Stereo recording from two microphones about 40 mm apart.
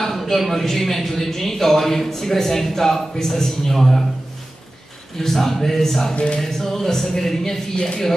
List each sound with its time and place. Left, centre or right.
0.0 s speech: centre
5.2 s speech: centre
6.1 s speech: left
6.4 s speech: centre